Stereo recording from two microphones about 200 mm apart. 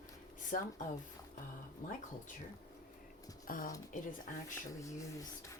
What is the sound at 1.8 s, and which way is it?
Speech, 40° left (ahead or behind).